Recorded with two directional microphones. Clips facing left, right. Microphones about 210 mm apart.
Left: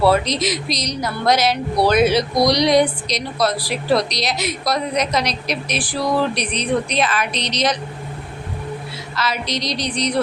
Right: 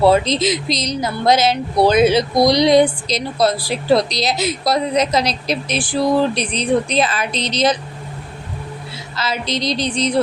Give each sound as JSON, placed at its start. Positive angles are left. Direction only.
{"t": 0.0, "sound": "speech", "side_deg": -25}
{"t": 9.1, "sound": "speech", "side_deg": -25}